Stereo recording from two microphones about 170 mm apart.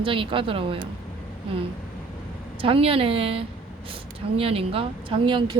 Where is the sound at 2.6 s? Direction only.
35° right (ahead or behind).